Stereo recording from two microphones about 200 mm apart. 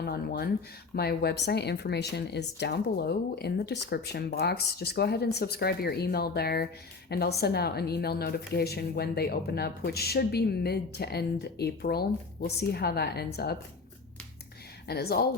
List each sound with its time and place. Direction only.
0.0 s a woman's voice: 50° left (ahead or behind)
14.8 s a woman's voice: 50° left (ahead or behind)